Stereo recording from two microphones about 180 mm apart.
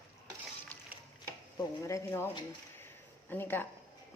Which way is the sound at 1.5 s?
15° left (ahead or behind).